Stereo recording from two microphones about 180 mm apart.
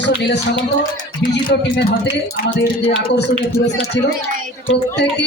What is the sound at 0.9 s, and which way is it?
Speech, 50° left (ahead or behind).